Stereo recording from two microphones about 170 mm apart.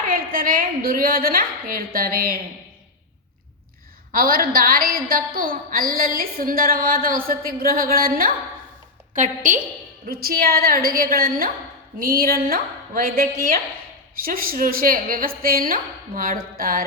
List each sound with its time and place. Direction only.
0.1 s a woman's voice: 55° right (ahead or behind)
4.1 s a woman's voice: 55° right (ahead or behind)
10.1 s a woman's voice: 60° right (ahead or behind)